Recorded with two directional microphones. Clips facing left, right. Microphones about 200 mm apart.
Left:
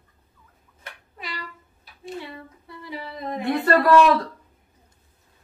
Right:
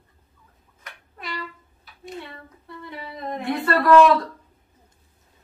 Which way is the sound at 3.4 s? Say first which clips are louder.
Left 2 dB; 40° left (ahead or behind).